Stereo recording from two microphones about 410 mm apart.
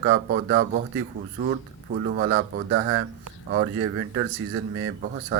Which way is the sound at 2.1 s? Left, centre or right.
Right.